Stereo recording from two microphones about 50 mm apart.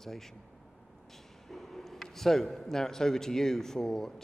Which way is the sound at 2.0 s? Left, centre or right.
Centre.